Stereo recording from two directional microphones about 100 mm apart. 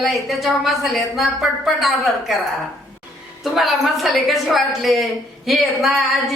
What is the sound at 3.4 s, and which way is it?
A woman's voice, centre (ahead or behind).